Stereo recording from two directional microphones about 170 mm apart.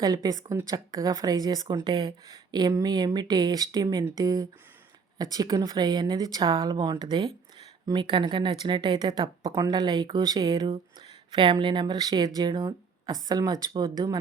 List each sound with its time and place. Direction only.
0.0 s speech: 20° right (ahead or behind)